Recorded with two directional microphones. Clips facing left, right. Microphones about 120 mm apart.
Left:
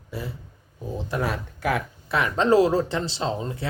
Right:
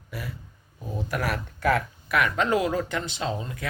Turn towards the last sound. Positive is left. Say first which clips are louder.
# left 3 dB
turn(degrees=30)  # may be behind; listen again after turning